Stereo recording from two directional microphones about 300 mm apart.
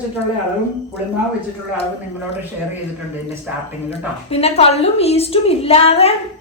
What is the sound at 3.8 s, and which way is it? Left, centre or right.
A woman's voice, centre.